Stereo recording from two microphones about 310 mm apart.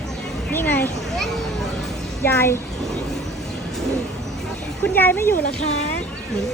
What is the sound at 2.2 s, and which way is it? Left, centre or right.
Speech, centre.